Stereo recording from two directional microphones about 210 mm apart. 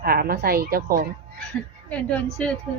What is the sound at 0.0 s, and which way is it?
Speech, 45° right (ahead or behind).